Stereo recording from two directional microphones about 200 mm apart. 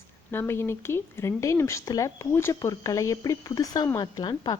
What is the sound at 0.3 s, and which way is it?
Speech, 10° left (ahead or behind).